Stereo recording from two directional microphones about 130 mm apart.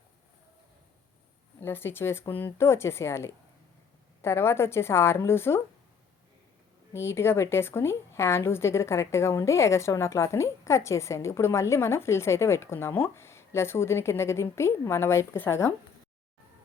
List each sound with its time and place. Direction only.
1.6 s a woman's voice: 15° left (ahead or behind)
6.9 s a woman's voice: 20° left (ahead or behind)